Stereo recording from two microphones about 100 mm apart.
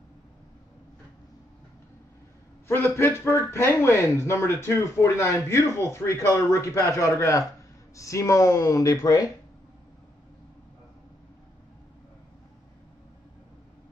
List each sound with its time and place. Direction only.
2.7 s speech: 25° left (ahead or behind)